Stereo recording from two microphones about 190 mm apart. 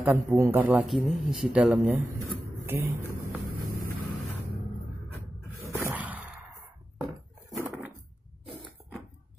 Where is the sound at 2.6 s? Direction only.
10° right (ahead or behind).